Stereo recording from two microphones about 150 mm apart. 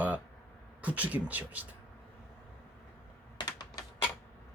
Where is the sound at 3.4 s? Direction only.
25° left (ahead or behind).